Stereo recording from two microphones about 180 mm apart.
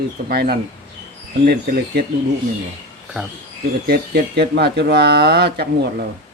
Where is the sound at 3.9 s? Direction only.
65° right (ahead or behind).